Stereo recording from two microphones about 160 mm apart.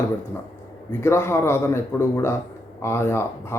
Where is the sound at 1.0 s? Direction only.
15° left (ahead or behind).